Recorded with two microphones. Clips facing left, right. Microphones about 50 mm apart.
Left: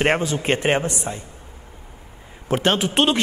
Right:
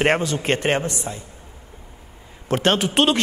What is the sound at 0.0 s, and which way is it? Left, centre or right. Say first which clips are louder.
Speech: even; centre.